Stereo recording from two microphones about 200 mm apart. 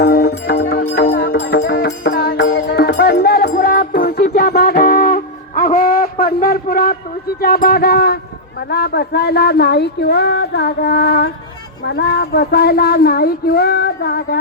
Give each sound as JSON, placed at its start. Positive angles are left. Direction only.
{"t": 0.0, "sound": "music", "side_deg": 50}
{"t": 7.3, "sound": "speech", "side_deg": 50}